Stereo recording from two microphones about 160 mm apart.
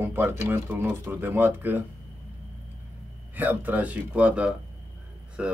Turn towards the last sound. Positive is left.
turn(degrees=-10)  # may be behind; listen again after turning